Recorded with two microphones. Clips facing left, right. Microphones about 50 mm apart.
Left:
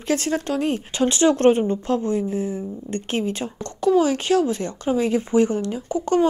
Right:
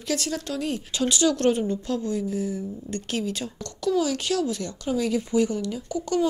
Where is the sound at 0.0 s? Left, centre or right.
Left.